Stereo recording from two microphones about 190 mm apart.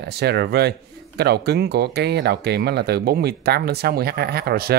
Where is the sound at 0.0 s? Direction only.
60° right (ahead or behind).